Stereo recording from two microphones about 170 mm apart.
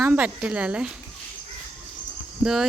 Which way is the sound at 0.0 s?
10° right (ahead or behind).